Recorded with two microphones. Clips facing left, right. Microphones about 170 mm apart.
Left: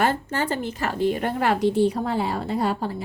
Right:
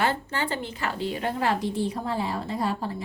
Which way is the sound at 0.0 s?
45° left (ahead or behind).